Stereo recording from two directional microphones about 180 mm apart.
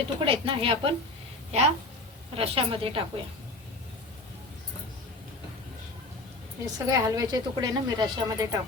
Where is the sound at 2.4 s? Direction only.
30° right (ahead or behind).